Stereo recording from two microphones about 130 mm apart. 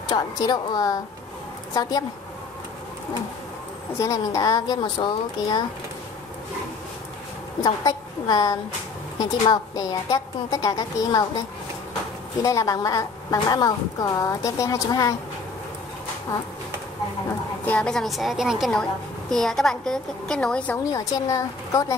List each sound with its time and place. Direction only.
0.1 s a woman's voice: 30° left (ahead or behind)
4.0 s a woman's voice: 25° left (ahead or behind)
7.6 s a woman's voice: 30° left (ahead or behind)
12.4 s a woman's voice: 25° left (ahead or behind)
17.6 s a woman's voice: 5° left (ahead or behind)
20.9 s a woman's voice: 25° left (ahead or behind)